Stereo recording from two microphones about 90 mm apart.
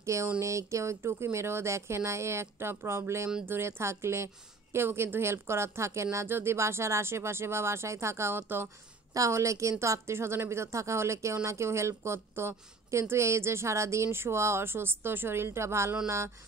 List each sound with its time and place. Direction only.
0.0 s a sound: 35° right (ahead or behind)
0.4 s a woman's voice: 35° right (ahead or behind)
9.1 s a woman's voice: 35° right (ahead or behind)